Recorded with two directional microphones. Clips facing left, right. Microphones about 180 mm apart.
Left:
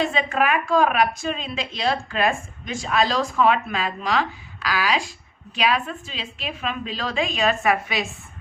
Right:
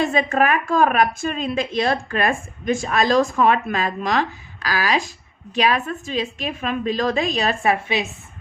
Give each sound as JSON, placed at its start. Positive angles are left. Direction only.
{"t": 0.0, "sound": "a woman's voice", "side_deg": -45}